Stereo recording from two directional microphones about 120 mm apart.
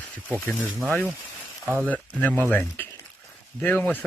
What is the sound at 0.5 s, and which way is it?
Speech, centre (ahead or behind).